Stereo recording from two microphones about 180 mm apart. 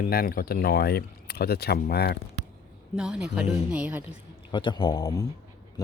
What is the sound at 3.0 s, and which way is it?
A woman's voice, 5° right (ahead or behind).